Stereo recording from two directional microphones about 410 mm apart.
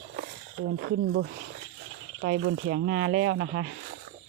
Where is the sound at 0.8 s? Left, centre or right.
Right.